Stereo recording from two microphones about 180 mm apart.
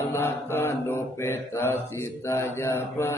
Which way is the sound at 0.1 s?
15° left (ahead or behind).